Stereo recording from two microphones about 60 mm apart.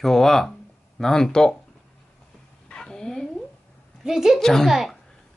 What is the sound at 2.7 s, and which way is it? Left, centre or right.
Dog, centre.